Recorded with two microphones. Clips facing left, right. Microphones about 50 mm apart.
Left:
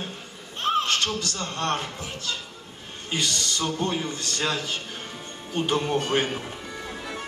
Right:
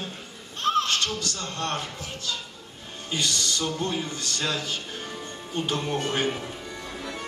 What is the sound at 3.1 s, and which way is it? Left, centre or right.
Speech, left.